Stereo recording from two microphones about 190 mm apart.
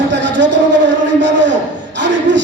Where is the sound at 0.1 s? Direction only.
70° right (ahead or behind).